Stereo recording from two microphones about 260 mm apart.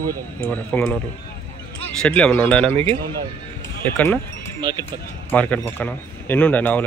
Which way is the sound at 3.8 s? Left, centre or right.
Centre.